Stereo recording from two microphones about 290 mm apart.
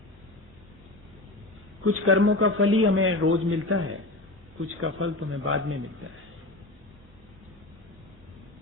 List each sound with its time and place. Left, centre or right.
1.8 s a man's voice: right